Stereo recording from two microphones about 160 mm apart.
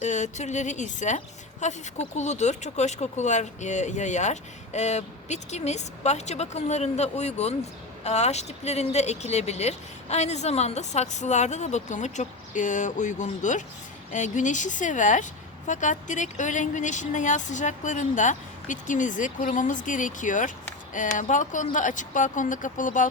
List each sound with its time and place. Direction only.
0.0 s speech: 50° left (ahead or behind)